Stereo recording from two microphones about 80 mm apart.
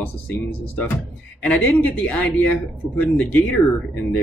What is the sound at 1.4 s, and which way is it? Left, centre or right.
A man's voice, centre.